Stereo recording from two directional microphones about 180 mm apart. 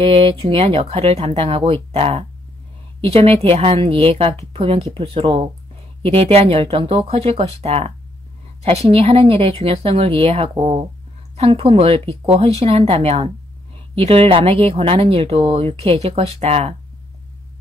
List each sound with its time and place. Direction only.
0.0 s speech: 30° right (ahead or behind)